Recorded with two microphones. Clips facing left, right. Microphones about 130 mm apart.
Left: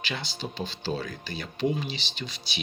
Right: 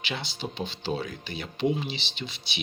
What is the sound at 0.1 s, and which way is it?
Speech, 25° right (ahead or behind).